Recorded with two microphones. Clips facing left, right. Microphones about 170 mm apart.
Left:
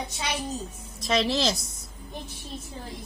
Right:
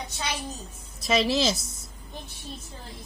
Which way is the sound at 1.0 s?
5° right (ahead or behind).